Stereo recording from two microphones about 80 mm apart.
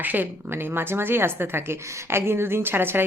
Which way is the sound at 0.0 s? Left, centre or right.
Right.